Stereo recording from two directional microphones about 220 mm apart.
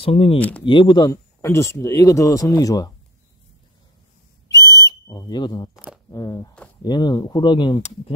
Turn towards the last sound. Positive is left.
turn(degrees=20)  # may be behind; listen again after turning